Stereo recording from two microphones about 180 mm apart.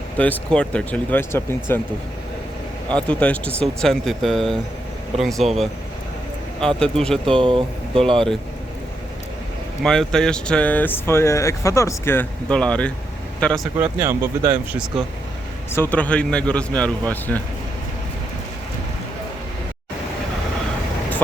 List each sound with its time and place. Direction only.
0.2 s speech: 5° left (ahead or behind)
3.1 s speech: 5° left (ahead or behind)
7.3 s speech: 30° right (ahead or behind)
9.8 s speech: 5° left (ahead or behind)
13.7 s speech: 10° right (ahead or behind)
15.7 s speech: 10° left (ahead or behind)